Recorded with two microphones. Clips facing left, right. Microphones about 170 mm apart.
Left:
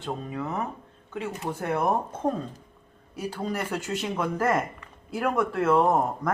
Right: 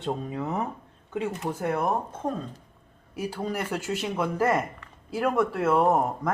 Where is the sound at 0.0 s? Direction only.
20° right (ahead or behind).